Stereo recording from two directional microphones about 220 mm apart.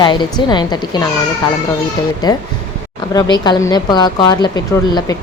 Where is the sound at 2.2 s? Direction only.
20° left (ahead or behind).